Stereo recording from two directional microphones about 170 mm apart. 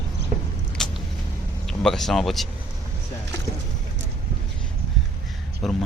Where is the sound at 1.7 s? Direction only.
Centre (ahead or behind).